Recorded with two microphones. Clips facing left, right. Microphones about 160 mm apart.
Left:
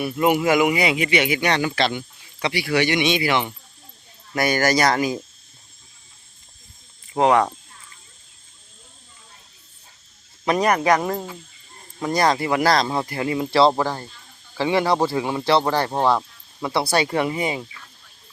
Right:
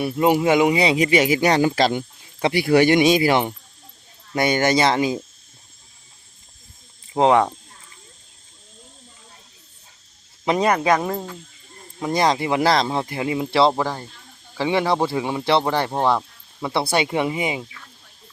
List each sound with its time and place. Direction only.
0.0 s a man's voice: 30° right (ahead or behind)
4.4 s speech: 25° right (ahead or behind)
7.1 s speech: 20° right (ahead or behind)
10.4 s speech: 20° right (ahead or behind)
15.9 s speech: 5° left (ahead or behind)
16.7 s speech: 25° right (ahead or behind)